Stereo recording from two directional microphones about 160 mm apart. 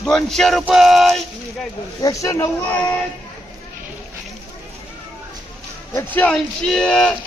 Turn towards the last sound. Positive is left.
turn(degrees=5)  # may be behind; listen again after turning